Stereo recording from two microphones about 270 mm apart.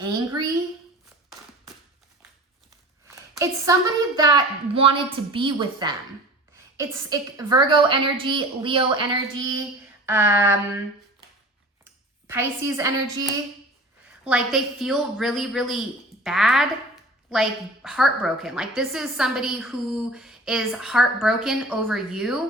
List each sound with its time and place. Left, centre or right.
0.0 s a woman's voice: centre
3.3 s a woman's voice: centre
10.1 s a woman's voice: centre
12.3 s a woman's voice: centre
14.3 s a woman's voice: centre
16.2 s a sound: centre
17.8 s a woman's voice: centre